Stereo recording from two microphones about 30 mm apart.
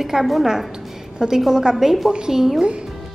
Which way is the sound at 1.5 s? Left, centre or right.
Right.